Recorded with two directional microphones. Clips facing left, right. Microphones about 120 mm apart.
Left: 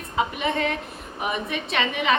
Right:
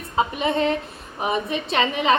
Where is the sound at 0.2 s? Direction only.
35° right (ahead or behind).